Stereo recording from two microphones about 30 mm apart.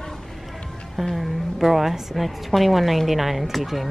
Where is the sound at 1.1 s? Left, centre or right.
Centre.